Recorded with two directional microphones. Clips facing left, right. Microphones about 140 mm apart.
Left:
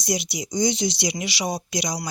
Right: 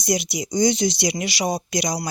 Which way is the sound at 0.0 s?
50° right (ahead or behind).